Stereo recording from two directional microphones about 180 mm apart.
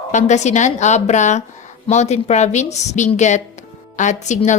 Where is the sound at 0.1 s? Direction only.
40° left (ahead or behind).